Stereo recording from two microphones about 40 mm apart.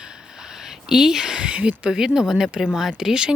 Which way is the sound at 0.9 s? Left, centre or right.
Centre.